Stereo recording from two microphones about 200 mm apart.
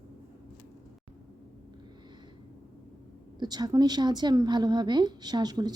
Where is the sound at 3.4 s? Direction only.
20° right (ahead or behind).